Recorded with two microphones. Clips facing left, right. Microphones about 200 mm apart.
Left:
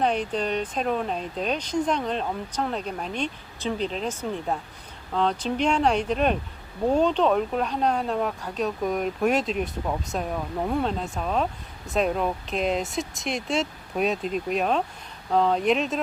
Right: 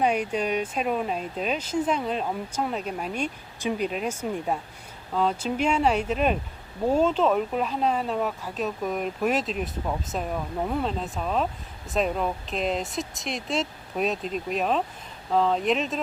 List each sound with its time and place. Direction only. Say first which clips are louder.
0.0 s speech: even; 10° right (ahead or behind)